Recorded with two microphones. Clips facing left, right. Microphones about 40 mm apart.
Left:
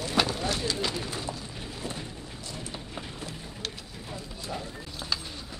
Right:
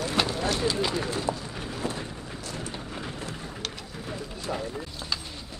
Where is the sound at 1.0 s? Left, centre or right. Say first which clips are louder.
Right 5 dB; right.